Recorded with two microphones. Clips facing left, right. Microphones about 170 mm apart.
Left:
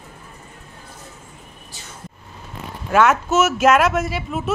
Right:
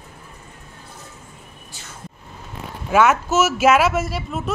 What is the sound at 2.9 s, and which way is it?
Speech, 5° right (ahead or behind).